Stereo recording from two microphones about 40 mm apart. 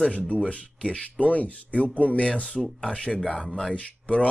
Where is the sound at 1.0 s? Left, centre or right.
Left.